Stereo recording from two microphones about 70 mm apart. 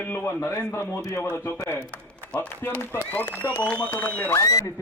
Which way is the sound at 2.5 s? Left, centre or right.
Left.